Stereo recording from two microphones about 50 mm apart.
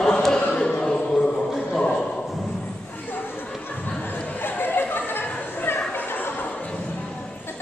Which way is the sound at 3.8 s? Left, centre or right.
Left.